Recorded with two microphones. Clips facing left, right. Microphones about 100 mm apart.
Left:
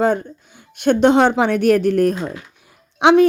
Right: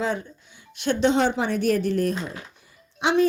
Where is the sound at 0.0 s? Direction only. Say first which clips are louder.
Left 9 dB; 50° left (ahead or behind).